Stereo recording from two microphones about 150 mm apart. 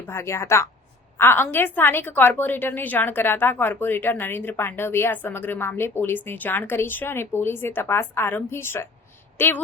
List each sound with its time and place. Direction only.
0.1 s a woman's voice: 20° left (ahead or behind)